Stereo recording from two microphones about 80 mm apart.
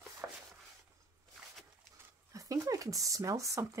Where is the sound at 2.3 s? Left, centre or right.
Right.